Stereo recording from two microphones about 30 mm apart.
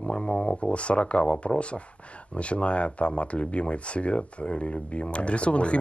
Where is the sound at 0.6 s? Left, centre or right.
Left.